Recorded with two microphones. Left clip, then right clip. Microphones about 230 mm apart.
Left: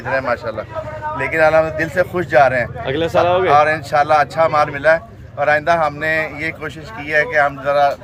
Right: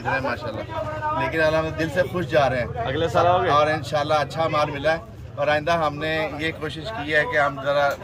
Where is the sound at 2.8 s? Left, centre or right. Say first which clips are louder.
Left 3 dB; left.